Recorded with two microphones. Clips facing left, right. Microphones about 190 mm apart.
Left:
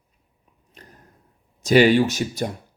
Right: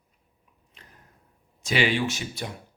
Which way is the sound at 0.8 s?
40° left (ahead or behind).